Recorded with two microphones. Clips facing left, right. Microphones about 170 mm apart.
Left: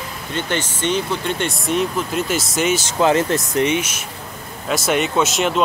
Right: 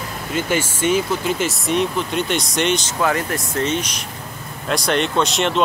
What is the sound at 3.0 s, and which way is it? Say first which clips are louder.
Speech: left 4 dB; 25° left (ahead or behind).